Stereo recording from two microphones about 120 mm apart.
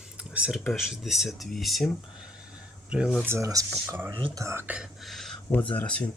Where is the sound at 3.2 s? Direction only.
25° right (ahead or behind).